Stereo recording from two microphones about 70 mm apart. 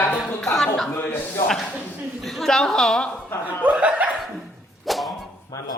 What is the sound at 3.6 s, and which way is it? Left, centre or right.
Speech, centre.